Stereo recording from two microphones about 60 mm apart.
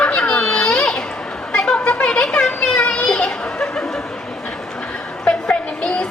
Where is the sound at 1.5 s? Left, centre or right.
Centre.